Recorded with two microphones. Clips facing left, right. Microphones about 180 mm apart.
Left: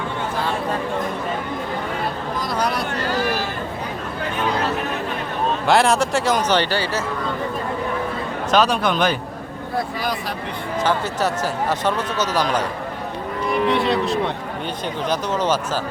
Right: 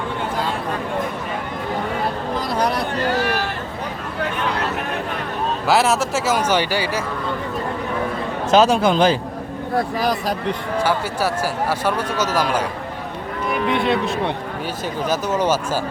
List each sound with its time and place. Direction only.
3.2 s a sound: 65° right (ahead or behind)
5.6 s speech: 5° right (ahead or behind)
8.4 s a man's voice: 25° right (ahead or behind)
9.7 s speech: 40° right (ahead or behind)
11.7 s speech: 10° right (ahead or behind)
13.7 s speech: centre (ahead or behind)
15.1 s speech: 10° right (ahead or behind)